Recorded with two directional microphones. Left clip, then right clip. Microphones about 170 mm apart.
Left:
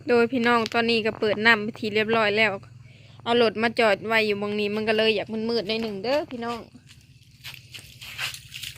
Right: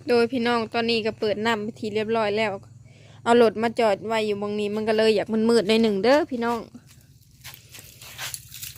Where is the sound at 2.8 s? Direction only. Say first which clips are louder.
Right 6 dB; 30° right (ahead or behind).